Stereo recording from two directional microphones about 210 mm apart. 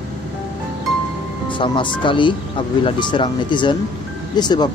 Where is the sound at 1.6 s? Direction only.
25° left (ahead or behind).